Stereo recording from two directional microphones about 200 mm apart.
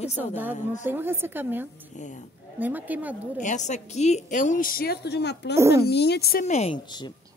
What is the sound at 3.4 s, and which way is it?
A woman's voice, 40° left (ahead or behind).